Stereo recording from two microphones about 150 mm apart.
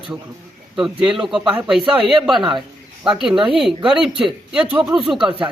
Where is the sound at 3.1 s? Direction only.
5° right (ahead or behind).